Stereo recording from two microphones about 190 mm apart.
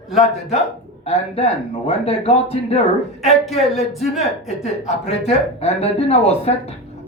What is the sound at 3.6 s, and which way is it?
Speech, centre (ahead or behind).